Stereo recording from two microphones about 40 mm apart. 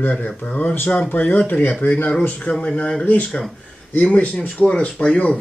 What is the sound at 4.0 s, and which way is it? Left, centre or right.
Speech, left.